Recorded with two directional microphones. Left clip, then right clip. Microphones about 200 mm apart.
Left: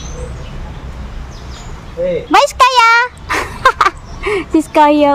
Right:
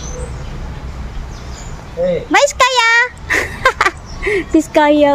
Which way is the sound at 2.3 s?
15° left (ahead or behind).